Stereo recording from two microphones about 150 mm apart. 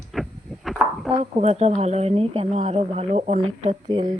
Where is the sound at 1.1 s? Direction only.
45° right (ahead or behind).